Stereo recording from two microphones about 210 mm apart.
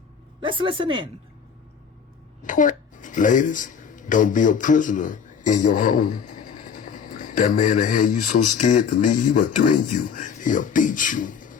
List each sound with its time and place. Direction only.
0.4 s a woman's voice: 25° right (ahead or behind)
2.4 s speech: 40° left (ahead or behind)